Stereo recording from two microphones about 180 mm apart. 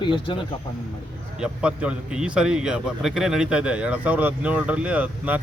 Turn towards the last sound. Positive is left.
turn(degrees=-10)  # may be behind; listen again after turning